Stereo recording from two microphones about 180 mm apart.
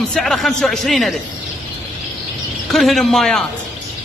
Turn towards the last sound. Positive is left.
turn(degrees=5)  # may be behind; listen again after turning